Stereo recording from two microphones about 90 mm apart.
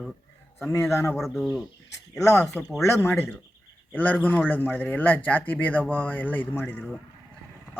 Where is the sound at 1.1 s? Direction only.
Centre (ahead or behind).